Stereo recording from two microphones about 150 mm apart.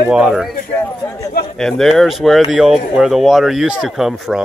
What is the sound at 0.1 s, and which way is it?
Speech, 5° right (ahead or behind).